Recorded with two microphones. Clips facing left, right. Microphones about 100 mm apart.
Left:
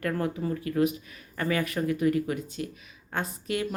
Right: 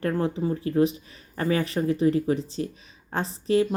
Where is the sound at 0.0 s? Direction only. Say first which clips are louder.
Right 4 dB; 25° right (ahead or behind).